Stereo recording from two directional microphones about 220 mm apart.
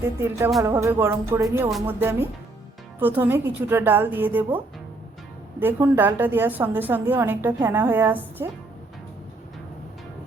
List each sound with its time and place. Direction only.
0.0 s a woman's voice: 10° right (ahead or behind)